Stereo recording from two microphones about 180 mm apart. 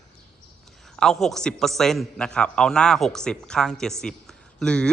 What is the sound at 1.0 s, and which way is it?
A man's voice, centre (ahead or behind).